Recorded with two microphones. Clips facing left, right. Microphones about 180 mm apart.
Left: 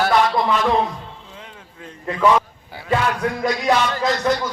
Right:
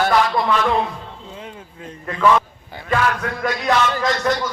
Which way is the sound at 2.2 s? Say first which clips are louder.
Even; 10° left (ahead or behind).